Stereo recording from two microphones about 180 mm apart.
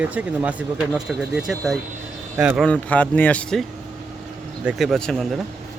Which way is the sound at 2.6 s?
5° left (ahead or behind).